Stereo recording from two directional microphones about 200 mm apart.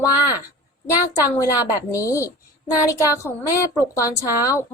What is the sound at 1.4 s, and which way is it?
A woman's voice, 15° left (ahead or behind).